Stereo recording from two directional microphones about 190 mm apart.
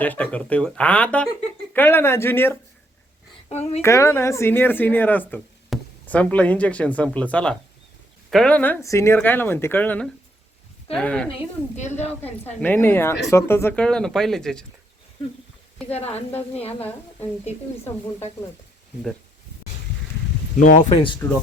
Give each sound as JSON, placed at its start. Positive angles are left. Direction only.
{"t": 0.0, "sound": "speech", "side_deg": 10}
{"t": 3.5, "sound": "speech", "side_deg": 35}
{"t": 3.8, "sound": "speech", "side_deg": 15}
{"t": 11.8, "sound": "speech", "side_deg": 35}
{"t": 12.5, "sound": "speech", "side_deg": 10}
{"t": 15.9, "sound": "speech", "side_deg": 35}
{"t": 17.4, "sound": "speech", "side_deg": 35}
{"t": 20.6, "sound": "speech", "side_deg": 45}
{"t": 20.9, "sound": "speech", "side_deg": 25}